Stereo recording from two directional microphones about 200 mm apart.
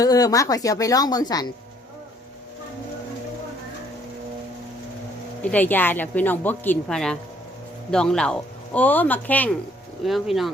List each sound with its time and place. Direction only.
0.0 s speech: 20° left (ahead or behind)
5.4 s speech: 10° left (ahead or behind)